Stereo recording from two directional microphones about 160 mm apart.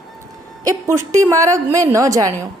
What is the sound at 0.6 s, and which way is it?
A woman's voice, 20° right (ahead or behind).